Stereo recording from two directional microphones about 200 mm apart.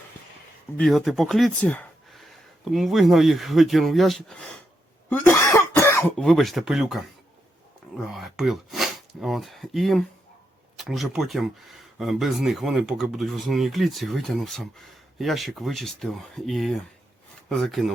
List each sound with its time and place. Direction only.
0.8 s speech: centre (ahead or behind)